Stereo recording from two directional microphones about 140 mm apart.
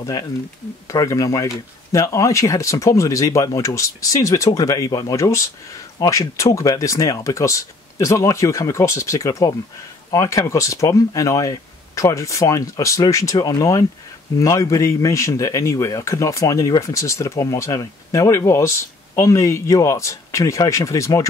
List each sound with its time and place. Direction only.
0.0 s speech: 25° left (ahead or behind)